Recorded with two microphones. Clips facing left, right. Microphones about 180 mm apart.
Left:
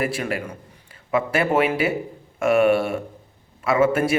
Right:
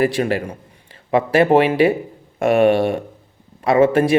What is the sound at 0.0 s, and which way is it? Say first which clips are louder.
A man's voice: right 7 dB; 30° right (ahead or behind).